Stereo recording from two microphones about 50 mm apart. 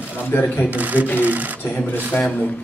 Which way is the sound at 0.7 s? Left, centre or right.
Right.